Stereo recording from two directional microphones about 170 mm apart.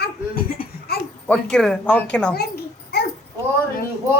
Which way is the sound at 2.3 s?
65° left (ahead or behind).